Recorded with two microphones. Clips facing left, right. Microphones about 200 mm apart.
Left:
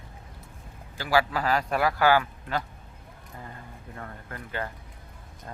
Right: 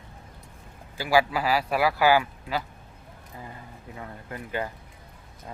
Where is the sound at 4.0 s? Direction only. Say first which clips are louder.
Right 3 dB; 15° right (ahead or behind).